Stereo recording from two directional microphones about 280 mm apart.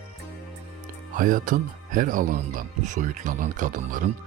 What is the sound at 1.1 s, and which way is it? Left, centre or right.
Speech, right.